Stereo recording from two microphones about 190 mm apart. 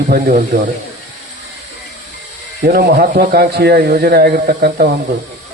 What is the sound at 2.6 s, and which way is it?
Speech, 55° right (ahead or behind).